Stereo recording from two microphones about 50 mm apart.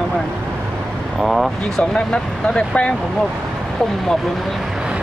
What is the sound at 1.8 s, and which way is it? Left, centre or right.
Speech, centre.